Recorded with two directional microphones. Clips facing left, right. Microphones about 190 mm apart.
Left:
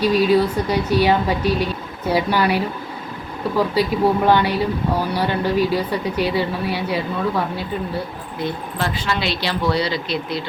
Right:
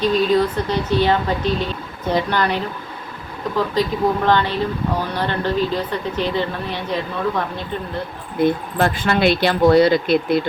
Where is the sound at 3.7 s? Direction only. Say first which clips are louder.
Even; 10° left (ahead or behind).